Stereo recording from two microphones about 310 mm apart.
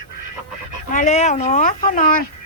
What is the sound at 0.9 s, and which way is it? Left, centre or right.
Speech, left.